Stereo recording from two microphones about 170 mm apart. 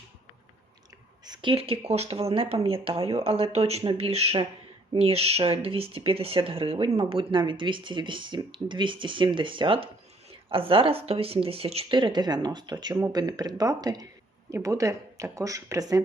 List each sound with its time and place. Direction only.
1.2 s speech: 25° right (ahead or behind)